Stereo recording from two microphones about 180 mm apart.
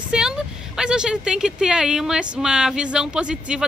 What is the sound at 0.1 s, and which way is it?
Speech, 5° right (ahead or behind).